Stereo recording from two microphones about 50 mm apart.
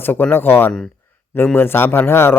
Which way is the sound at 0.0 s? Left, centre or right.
Left.